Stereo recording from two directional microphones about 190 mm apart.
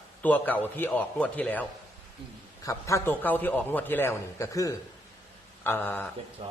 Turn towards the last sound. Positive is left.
turn(degrees=10)  # may be behind; listen again after turning